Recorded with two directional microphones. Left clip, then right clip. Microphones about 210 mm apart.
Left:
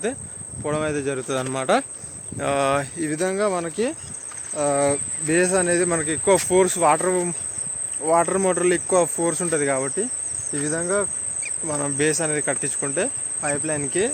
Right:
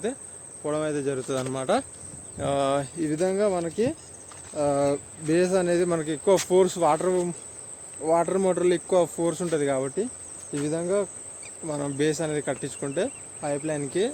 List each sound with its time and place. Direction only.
0.6 s speech: 10° left (ahead or behind)
2.4 s speech: centre (ahead or behind)